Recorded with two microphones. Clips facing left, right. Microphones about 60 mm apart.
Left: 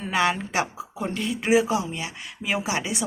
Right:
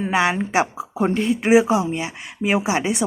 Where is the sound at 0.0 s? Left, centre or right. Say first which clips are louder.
Right 4 dB; centre.